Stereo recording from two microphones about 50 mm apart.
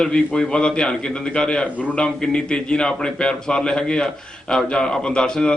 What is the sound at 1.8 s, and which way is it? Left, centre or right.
Speech, left.